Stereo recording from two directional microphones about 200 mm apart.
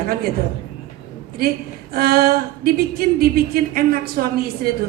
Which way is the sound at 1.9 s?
50° right (ahead or behind).